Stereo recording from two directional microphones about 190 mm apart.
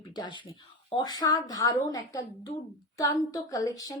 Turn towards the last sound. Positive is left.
turn(degrees=20)  # may be behind; listen again after turning